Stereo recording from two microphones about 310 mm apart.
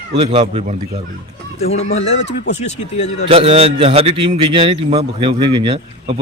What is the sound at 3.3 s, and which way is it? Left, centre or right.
A man's voice, centre.